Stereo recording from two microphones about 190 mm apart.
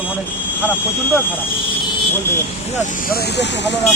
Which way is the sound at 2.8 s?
50° left (ahead or behind).